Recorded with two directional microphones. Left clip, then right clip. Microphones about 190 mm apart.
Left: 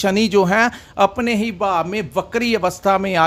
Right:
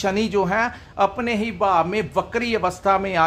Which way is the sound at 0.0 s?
35° left (ahead or behind).